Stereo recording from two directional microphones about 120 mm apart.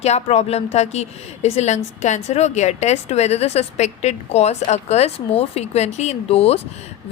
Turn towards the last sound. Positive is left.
turn(degrees=60)  # may be behind; listen again after turning